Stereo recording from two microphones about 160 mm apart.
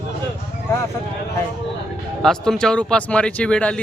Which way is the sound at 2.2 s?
5° left (ahead or behind).